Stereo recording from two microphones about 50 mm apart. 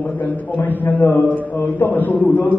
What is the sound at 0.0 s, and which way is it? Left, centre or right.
A man's voice, left.